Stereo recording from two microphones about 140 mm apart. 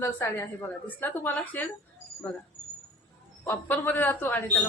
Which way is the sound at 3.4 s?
15° left (ahead or behind).